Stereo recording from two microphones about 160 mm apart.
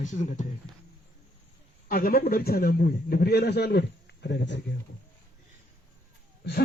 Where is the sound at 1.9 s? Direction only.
65° left (ahead or behind); by 4.6 s 90° left.